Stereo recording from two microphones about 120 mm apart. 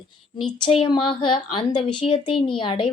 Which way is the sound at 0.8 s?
45° left (ahead or behind).